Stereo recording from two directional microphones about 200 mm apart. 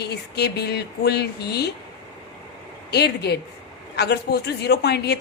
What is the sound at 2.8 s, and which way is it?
A woman's voice, 55° left (ahead or behind).